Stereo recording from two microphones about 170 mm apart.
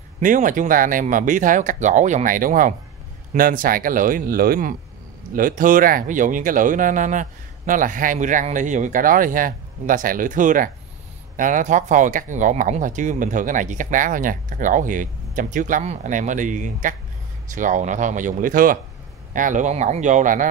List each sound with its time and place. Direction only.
0.2 s speech: 50° right (ahead or behind)